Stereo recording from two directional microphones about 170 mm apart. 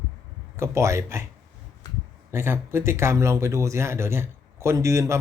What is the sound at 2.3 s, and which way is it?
Speech, 15° right (ahead or behind).